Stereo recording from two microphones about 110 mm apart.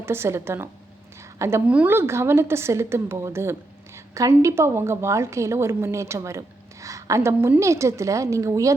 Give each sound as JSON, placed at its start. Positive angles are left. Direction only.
{"t": 0.0, "sound": "a woman's voice", "side_deg": -25}
{"t": 1.6, "sound": "a woman's voice", "side_deg": -10}